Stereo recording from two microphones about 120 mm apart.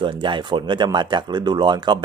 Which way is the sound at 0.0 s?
40° right (ahead or behind).